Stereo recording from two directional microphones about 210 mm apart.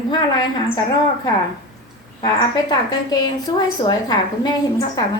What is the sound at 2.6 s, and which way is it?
A woman's voice, 20° left (ahead or behind).